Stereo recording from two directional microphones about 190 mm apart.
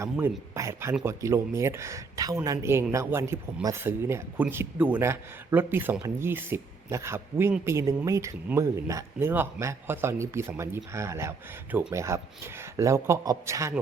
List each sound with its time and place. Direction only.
0.0 s speech: 15° right (ahead or behind)